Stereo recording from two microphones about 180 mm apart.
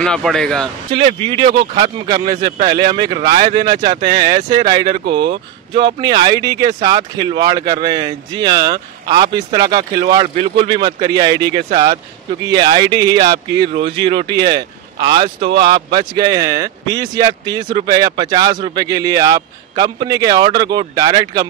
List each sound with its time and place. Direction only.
0.0 s speech: 5° left (ahead or behind)
0.9 s speech: 30° right (ahead or behind)